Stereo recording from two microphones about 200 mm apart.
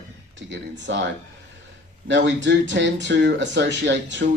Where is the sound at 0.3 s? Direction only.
65° right (ahead or behind).